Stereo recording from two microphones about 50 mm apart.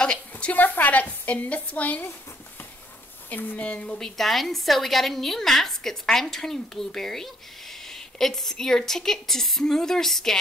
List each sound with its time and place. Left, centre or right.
0.0 s a sound: centre
0.5 s a woman's voice: left
3.3 s a woman's voice: left
3.6 s a woman's voice: left
4.0 s a woman's voice: centre